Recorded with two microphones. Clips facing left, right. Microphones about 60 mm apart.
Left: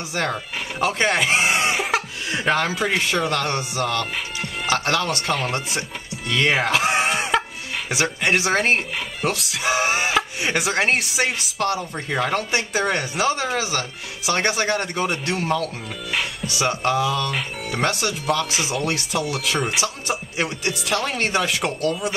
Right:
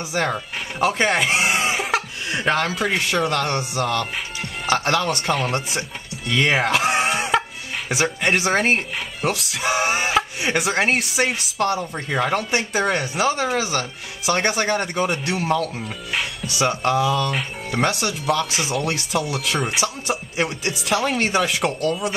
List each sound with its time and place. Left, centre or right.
0.1 s speech: centre